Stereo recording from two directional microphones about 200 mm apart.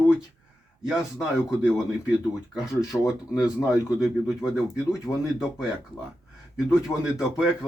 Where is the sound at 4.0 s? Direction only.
Centre (ahead or behind).